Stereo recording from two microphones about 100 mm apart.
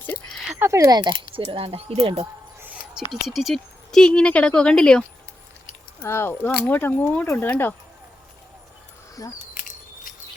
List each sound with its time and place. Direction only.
0.6 s a sound: 25° right (ahead or behind)
0.9 s speech: 45° right (ahead or behind)
1.3 s speech: 70° right (ahead or behind)
3.1 s speech: centre (ahead or behind)
6.0 s speech: 25° left (ahead or behind)
9.2 s speech: 35° left (ahead or behind)